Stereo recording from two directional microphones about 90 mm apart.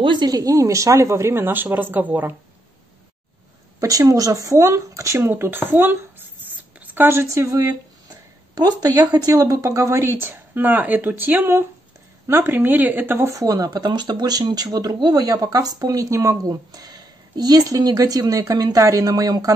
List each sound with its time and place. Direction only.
0.0 s speech: 60° right (ahead or behind)
0.3 s speech: 40° right (ahead or behind); by 2.3 s 20° right (ahead or behind)
3.8 s speech: 40° right (ahead or behind)
13.4 s speech: 40° right (ahead or behind)